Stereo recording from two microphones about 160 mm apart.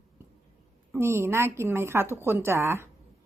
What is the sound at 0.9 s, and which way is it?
A woman's voice, 15° right (ahead or behind).